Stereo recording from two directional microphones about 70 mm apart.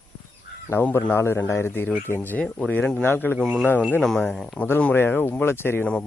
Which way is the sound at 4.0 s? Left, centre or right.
Centre.